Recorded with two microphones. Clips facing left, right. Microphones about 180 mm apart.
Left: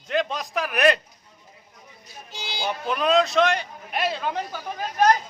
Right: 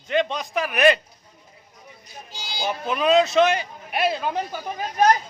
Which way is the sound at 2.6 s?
5° right (ahead or behind).